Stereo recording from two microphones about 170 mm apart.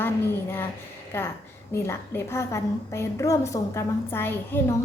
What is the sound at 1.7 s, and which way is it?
A woman's voice, 15° left (ahead or behind).